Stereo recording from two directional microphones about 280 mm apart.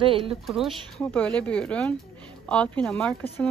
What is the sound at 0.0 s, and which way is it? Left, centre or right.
Speech, centre.